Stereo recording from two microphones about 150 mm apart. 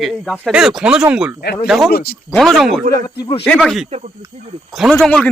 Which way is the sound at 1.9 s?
90° left.